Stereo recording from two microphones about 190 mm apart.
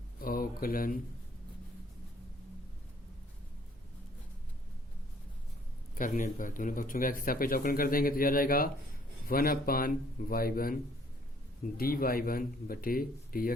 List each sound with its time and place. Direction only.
0.2 s speech: 50° left (ahead or behind)
6.0 s speech: 40° left (ahead or behind)
11.8 s speech: 50° left (ahead or behind)